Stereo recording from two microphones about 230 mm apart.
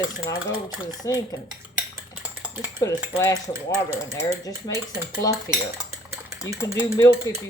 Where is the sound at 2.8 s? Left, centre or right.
Centre.